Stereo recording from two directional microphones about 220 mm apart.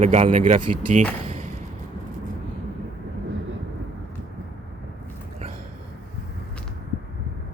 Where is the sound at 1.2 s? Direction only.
30° right (ahead or behind).